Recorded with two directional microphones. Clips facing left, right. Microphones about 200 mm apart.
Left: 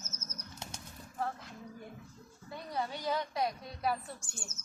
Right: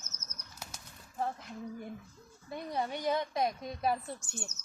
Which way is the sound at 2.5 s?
20° right (ahead or behind).